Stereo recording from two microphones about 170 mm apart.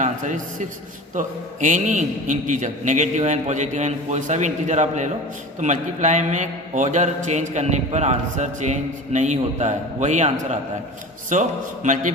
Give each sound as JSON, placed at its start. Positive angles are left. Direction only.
{"t": 0.0, "sound": "a man's voice", "side_deg": -50}